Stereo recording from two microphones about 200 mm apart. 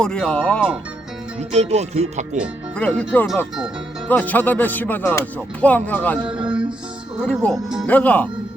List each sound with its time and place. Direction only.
0.0 s speech: 5° left (ahead or behind)
1.4 s music: 35° right (ahead or behind)
2.4 s speech: 5° left (ahead or behind)
6.3 s music: 5° right (ahead or behind)
7.2 s speech: 5° left (ahead or behind)